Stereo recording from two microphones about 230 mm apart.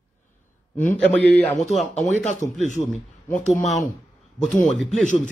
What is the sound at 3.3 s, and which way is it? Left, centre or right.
A man's voice, centre.